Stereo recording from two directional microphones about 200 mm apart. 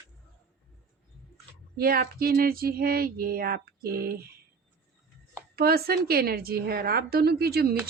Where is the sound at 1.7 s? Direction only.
50° right (ahead or behind).